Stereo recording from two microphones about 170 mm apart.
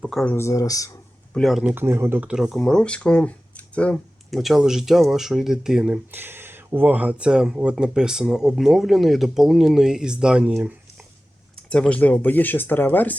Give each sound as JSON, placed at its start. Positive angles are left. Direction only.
{"t": 0.0, "sound": "speech", "side_deg": 0}
{"t": 0.3, "sound": "speech", "side_deg": 20}
{"t": 1.3, "sound": "speech", "side_deg": 0}
{"t": 1.7, "sound": "speech", "side_deg": -15}
{"t": 11.5, "sound": "speech", "side_deg": 5}